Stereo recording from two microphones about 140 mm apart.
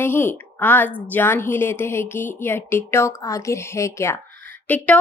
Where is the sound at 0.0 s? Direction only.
15° left (ahead or behind).